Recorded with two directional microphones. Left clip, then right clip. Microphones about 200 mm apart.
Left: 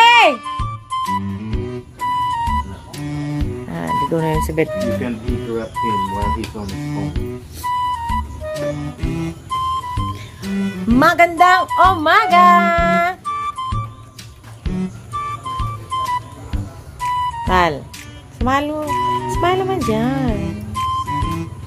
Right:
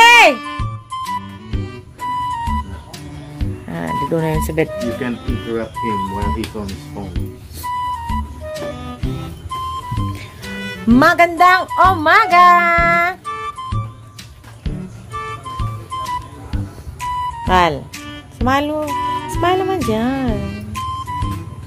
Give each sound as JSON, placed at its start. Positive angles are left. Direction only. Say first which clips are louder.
{"t": 0.0, "sound": "music", "louder": "right 2 dB", "side_deg": -20}
{"t": 0.4, "sound": "music", "louder": "left 2 dB", "side_deg": 0}
{"t": 5.8, "sound": "speech", "louder": "left 5 dB", "side_deg": 0}
{"t": 6.6, "sound": "music", "louder": "left 4 dB", "side_deg": 0}
{"t": 11.0, "sound": "speech", "louder": "even", "side_deg": -20}
{"t": 13.2, "sound": "music", "louder": "left 3 dB", "side_deg": 0}
{"t": 17.5, "sound": "speech", "louder": "right 3 dB", "side_deg": -15}
{"t": 18.9, "sound": "music", "louder": "left 2 dB", "side_deg": 0}